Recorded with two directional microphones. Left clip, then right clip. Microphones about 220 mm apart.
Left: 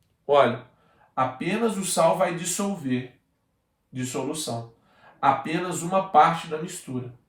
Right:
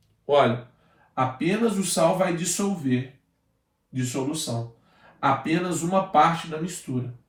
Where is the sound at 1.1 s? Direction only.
10° left (ahead or behind).